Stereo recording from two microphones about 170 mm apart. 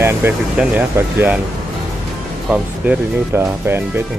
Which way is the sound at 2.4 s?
5° right (ahead or behind).